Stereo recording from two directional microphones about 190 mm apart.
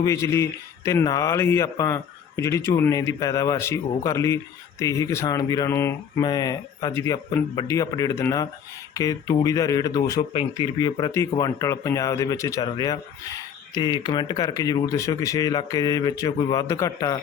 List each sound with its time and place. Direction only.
0.0 s speech: 15° left (ahead or behind)